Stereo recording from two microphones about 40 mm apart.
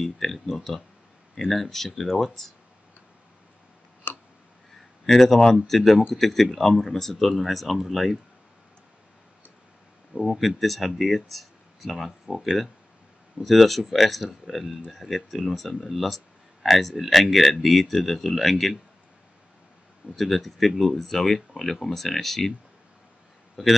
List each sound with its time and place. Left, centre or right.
0.0 s speech: centre
4.1 s tick: left
5.0 s speech: centre
10.1 s speech: centre
20.2 s speech: centre
23.6 s speech: centre